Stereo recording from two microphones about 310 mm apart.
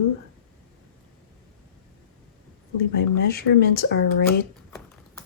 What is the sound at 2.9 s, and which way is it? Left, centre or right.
Speech, left.